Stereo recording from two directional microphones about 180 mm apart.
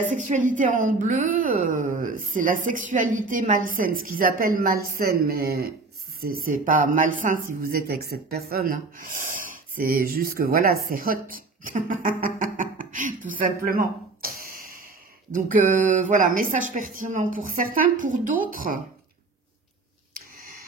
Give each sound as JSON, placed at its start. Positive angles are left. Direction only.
{"t": 0.1, "sound": "a woman's voice", "side_deg": -40}
{"t": 13.7, "sound": "a sound", "side_deg": -55}
{"t": 15.3, "sound": "a woman's voice", "side_deg": -45}